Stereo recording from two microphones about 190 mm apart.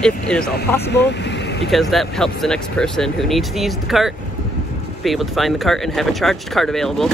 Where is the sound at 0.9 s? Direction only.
65° left (ahead or behind).